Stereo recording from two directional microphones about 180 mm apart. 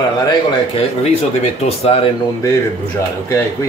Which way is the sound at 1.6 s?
35° left (ahead or behind).